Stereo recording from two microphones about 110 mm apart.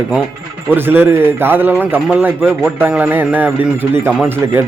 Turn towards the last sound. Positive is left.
turn(degrees=-30)  # may be behind; listen again after turning